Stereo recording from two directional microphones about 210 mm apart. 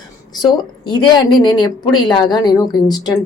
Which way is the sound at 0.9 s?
20° left (ahead or behind).